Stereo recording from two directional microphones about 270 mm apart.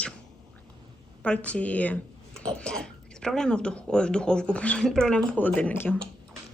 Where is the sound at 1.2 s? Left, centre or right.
Centre.